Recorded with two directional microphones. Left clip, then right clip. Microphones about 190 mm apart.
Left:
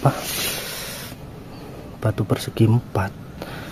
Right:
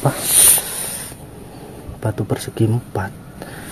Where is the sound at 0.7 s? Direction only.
Centre (ahead or behind).